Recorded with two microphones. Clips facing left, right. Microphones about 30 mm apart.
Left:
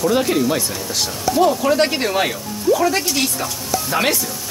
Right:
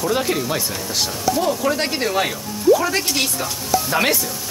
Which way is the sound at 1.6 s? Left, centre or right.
Centre.